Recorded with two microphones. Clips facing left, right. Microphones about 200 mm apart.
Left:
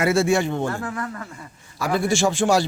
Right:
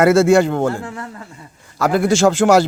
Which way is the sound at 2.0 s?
90° right.